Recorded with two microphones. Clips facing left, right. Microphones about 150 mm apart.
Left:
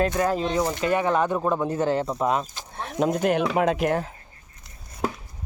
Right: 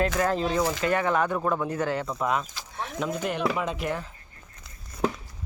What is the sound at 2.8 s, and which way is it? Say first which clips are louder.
Speech: left 7 dB; 45° left (ahead or behind).